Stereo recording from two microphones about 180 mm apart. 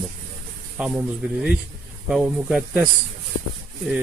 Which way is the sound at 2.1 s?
5° right (ahead or behind).